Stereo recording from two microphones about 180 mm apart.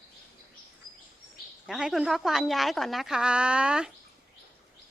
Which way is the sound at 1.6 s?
Centre (ahead or behind).